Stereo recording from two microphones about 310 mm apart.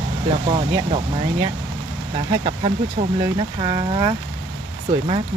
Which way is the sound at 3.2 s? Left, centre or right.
Centre.